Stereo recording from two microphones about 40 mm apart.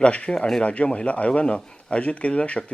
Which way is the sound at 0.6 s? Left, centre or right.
Left.